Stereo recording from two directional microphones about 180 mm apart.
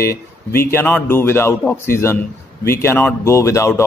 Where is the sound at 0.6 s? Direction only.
15° left (ahead or behind).